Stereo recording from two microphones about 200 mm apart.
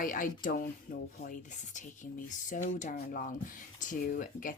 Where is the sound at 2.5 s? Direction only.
40° left (ahead or behind).